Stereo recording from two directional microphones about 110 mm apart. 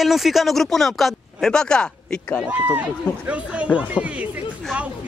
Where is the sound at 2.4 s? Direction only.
15° right (ahead or behind).